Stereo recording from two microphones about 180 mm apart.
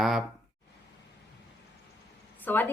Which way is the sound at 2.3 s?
10° left (ahead or behind).